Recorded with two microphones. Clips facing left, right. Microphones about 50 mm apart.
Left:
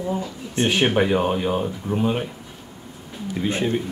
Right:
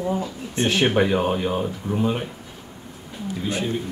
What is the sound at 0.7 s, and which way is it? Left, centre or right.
Speech, centre.